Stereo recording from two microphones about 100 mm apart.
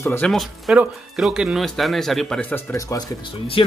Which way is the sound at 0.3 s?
Centre (ahead or behind).